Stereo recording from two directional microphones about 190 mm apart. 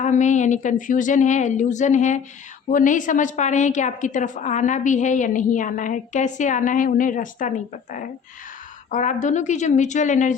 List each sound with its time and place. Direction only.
0.0 s a woman's voice: 40° left (ahead or behind)
8.9 s a woman's voice: 40° left (ahead or behind)